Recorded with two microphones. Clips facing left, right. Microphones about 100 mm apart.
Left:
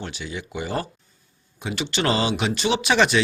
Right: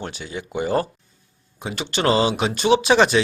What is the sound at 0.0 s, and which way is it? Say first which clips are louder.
Speech: right 2 dB; 40° right (ahead or behind).